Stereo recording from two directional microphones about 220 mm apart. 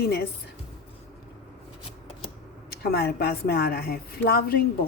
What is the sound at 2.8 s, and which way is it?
A woman's voice, 45° left (ahead or behind).